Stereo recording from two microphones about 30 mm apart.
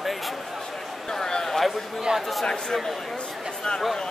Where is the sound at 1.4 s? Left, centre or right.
Centre.